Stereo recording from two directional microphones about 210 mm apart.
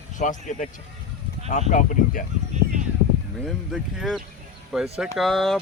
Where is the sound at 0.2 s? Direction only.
35° left (ahead or behind).